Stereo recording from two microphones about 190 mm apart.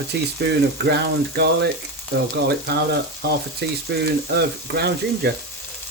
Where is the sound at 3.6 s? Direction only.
60° right (ahead or behind).